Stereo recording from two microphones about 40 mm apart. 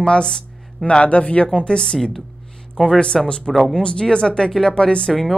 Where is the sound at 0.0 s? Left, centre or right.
Centre.